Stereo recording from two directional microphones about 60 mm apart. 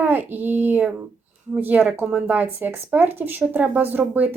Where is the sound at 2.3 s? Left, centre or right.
Right.